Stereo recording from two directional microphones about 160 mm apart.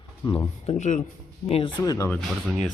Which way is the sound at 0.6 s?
45° left (ahead or behind).